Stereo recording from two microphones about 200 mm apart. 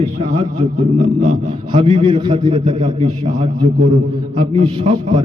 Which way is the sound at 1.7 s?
30° right (ahead or behind).